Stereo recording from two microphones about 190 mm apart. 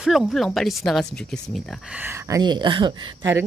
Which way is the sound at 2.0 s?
15° right (ahead or behind).